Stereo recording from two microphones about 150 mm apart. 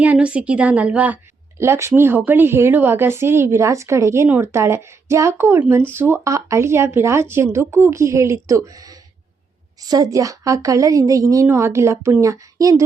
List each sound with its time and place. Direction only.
0.0 s a woman's voice: 10° right (ahead or behind)